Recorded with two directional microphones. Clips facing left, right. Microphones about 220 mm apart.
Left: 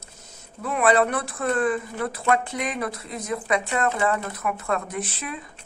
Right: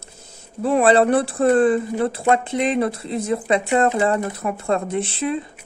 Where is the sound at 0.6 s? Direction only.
30° right (ahead or behind).